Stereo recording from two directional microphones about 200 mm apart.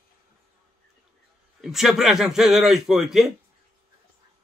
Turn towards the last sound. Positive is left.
turn(degrees=0)  # may be behind; listen again after turning